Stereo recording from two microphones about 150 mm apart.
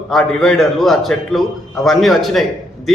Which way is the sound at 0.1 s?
5° left (ahead or behind).